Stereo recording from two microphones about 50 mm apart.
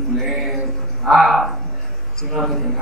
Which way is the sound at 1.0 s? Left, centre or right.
Centre.